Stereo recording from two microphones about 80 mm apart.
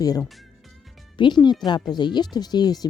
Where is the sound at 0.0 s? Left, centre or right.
Left.